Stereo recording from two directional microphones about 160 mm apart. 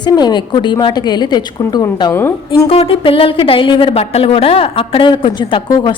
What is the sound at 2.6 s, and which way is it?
Speech, 35° left (ahead or behind).